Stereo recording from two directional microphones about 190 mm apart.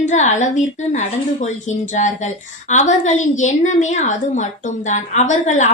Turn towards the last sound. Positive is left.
turn(degrees=40)  # may be behind; listen again after turning